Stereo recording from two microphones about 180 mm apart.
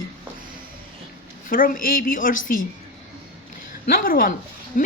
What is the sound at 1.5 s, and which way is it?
Speech, 50° left (ahead or behind).